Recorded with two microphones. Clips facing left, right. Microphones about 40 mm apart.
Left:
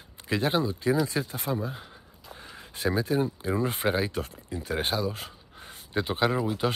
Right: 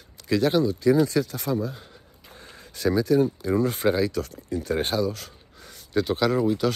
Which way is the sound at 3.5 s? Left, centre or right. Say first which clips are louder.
Right 2 dB; left.